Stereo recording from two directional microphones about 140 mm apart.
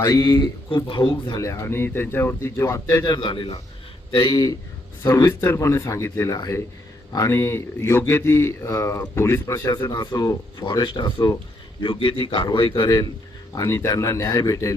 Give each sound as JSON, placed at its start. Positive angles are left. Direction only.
{"t": 0.0, "sound": "speech", "side_deg": 30}
{"t": 1.4, "sound": "speech", "side_deg": 20}
{"t": 3.2, "sound": "speech", "side_deg": 35}